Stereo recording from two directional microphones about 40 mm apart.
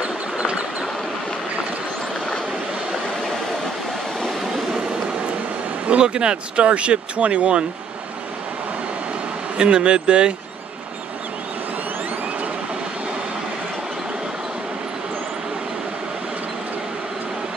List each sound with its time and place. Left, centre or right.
0.4 s a sound: right
5.9 s speech: right
9.6 s speech: right